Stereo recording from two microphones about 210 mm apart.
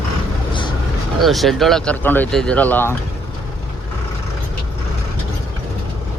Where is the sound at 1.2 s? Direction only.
Centre (ahead or behind).